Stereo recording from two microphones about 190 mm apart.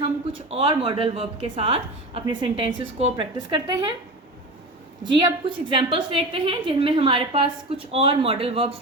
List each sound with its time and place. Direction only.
0.0 s speech: 25° right (ahead or behind)
5.2 s speech: 25° right (ahead or behind)